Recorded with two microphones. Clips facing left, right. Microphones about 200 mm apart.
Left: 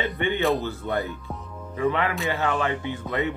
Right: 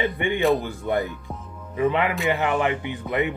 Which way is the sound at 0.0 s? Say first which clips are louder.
Right 2 dB; 15° right (ahead or behind).